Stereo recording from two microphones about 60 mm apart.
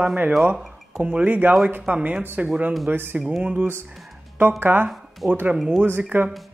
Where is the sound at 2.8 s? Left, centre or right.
Right.